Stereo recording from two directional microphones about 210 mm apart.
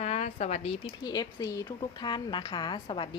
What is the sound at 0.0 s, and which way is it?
A woman's voice, 30° left (ahead or behind).